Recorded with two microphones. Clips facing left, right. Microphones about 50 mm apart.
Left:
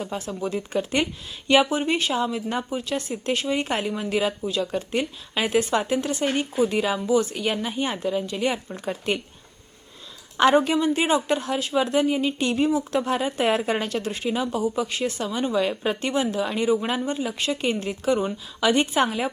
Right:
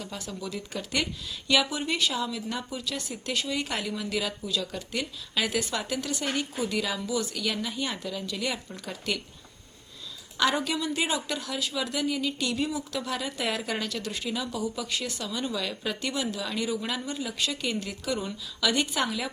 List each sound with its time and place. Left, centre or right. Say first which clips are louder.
0.0 s speech: left 8 dB; left
10.3 s speech: left 8 dB; left